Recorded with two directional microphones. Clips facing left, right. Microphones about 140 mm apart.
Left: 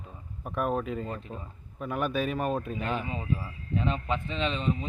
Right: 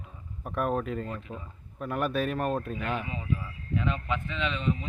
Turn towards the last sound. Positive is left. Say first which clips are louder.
# left 1 dB
turn(degrees=30)  # may be behind; listen again after turning